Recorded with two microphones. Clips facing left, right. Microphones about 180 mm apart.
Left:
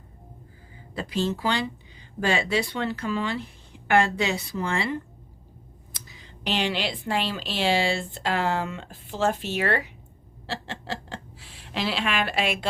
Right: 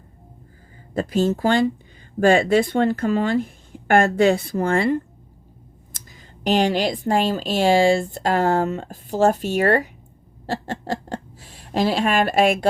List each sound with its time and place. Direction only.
0.9 s speech: 45° right (ahead or behind)